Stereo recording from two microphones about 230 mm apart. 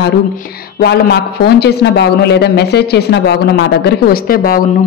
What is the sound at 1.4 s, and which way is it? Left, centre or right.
A woman's voice, left.